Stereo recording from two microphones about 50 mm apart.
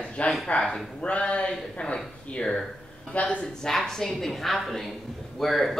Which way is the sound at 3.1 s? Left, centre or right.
Left.